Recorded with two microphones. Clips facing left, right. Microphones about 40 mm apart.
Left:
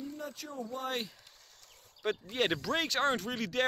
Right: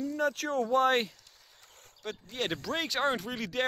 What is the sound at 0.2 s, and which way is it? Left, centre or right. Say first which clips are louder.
Speech: right 12 dB; right.